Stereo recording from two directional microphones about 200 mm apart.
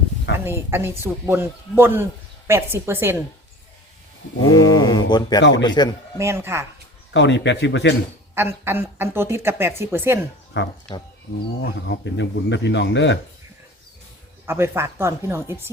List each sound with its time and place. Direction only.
0.3 s a woman's voice: 10° right (ahead or behind)
4.4 s mantra: 20° left (ahead or behind)
5.4 s speech: 65° left (ahead or behind)
5.6 s mantra: 20° left (ahead or behind)
6.1 s a woman's voice: 15° right (ahead or behind)
7.1 s speech: 65° left (ahead or behind)
8.4 s a woman's voice: 10° right (ahead or behind)
10.5 s speech: 65° left (ahead or behind)
14.4 s a woman's voice: 10° right (ahead or behind)